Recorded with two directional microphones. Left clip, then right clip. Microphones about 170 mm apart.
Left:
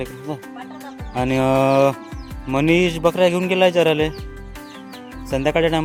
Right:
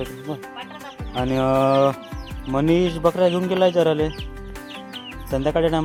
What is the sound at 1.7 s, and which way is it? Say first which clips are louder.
Music: left 2 dB; 20° left (ahead or behind).